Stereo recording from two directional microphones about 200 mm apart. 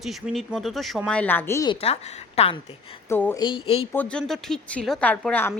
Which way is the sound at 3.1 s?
10° left (ahead or behind).